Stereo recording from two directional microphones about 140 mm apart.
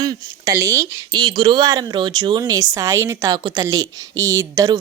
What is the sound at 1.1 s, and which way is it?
A woman's voice, 35° right (ahead or behind).